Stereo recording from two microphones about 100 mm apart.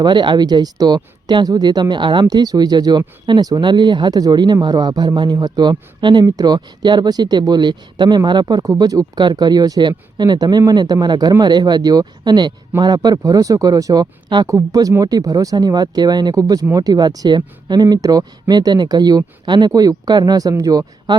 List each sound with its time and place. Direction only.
0.0 s speech: 50° right (ahead or behind)
14.4 s speech: 35° right (ahead or behind)